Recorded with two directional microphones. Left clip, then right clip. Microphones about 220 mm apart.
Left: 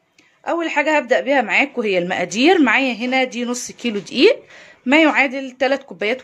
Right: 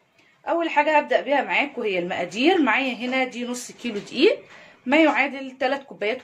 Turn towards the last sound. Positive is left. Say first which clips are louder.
# left 5 dB
turn(degrees=45)  # may be behind; listen again after turning